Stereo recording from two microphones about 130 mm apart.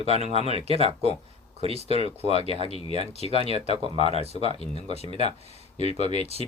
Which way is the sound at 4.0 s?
50° left (ahead or behind).